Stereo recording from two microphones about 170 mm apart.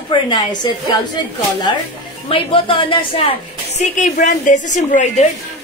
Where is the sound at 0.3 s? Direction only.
25° left (ahead or behind).